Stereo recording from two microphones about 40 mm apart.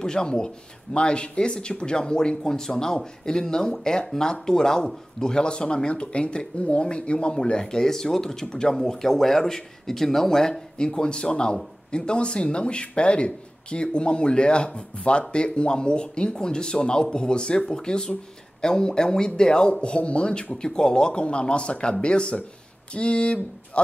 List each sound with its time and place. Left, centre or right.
0.0 s speech: centre